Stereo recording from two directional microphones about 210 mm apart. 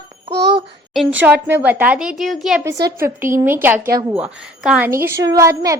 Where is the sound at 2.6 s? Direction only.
15° right (ahead or behind).